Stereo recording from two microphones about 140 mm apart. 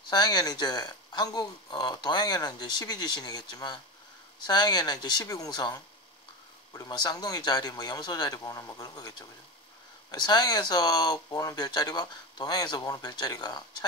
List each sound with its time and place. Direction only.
0.1 s speech: 30° left (ahead or behind)
10.1 s speech: 30° left (ahead or behind)